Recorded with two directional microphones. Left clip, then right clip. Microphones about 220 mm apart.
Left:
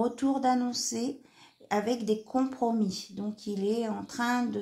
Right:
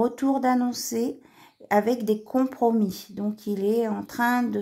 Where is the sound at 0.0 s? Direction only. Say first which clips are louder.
Right 4 dB; 35° right (ahead or behind).